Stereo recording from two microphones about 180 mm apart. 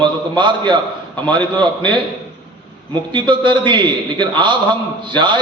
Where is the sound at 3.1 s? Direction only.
25° right (ahead or behind).